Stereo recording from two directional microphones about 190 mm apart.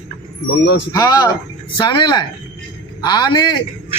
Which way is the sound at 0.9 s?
20° left (ahead or behind).